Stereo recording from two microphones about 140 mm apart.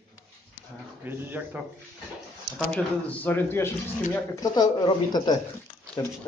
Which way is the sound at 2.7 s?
10° left (ahead or behind).